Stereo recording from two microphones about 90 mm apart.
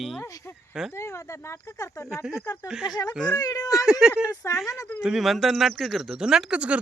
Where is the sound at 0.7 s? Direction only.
5° right (ahead or behind).